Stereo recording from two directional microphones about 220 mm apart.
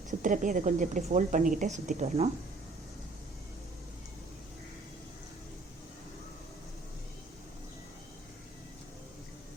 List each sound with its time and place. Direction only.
0.2 s a woman's voice: 35° right (ahead or behind)